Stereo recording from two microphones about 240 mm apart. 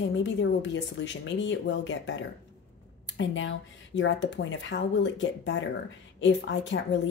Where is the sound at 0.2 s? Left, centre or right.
Left.